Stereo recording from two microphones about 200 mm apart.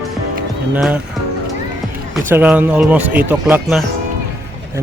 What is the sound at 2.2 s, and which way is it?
Speech, 10° right (ahead or behind).